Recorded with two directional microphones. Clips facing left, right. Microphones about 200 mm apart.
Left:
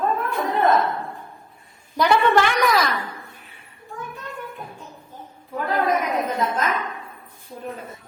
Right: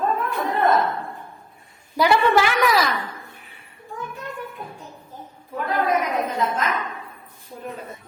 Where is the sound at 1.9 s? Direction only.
10° right (ahead or behind).